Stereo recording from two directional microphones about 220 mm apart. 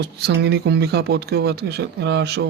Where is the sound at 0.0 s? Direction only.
50° right (ahead or behind).